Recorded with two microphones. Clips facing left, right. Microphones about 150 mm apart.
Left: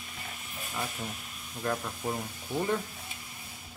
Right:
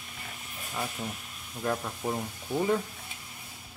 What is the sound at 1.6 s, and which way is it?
Speech, 5° right (ahead or behind).